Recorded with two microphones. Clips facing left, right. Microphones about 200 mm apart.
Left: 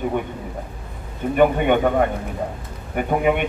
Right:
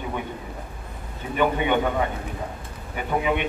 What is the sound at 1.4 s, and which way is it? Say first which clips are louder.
Speech: left 5 dB; 50° left (ahead or behind).